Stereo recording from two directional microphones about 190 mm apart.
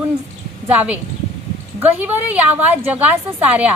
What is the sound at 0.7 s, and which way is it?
A woman's voice, 10° right (ahead or behind).